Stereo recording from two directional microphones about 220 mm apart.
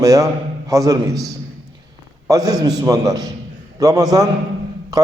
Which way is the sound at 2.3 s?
15° right (ahead or behind).